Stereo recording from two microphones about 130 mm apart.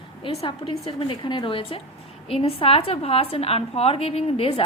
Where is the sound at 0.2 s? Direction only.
45° left (ahead or behind).